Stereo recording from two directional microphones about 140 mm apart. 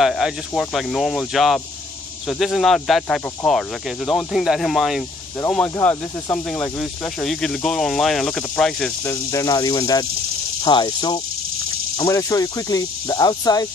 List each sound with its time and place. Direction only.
0.0 s speech: centre (ahead or behind)
5.8 s speech: 20° left (ahead or behind)
6.8 s speech: 5° left (ahead or behind)
9.0 s speech: 20° left (ahead or behind)